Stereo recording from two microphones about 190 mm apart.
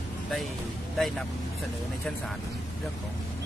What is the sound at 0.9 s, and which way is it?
Speech, centre (ahead or behind).